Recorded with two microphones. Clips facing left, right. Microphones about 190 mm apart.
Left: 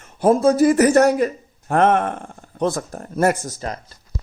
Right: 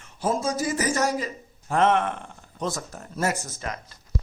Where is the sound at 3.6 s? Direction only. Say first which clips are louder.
Left 5 dB; 35° left (ahead or behind).